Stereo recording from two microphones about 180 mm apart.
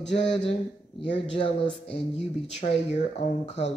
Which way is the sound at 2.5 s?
35° left (ahead or behind).